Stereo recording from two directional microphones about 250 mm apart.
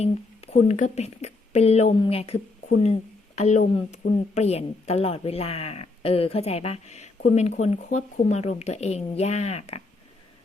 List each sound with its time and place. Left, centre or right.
0.0 s speech: left